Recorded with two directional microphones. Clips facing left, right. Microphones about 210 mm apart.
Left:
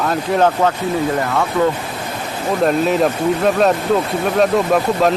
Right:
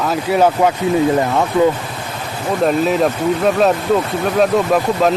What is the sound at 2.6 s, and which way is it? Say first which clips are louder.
Speech: even; centre (ahead or behind).